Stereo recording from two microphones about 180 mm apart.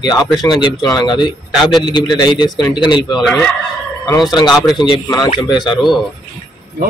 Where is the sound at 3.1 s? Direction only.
Centre (ahead or behind).